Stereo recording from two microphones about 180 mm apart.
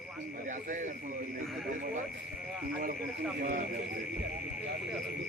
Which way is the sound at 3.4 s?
50° right (ahead or behind).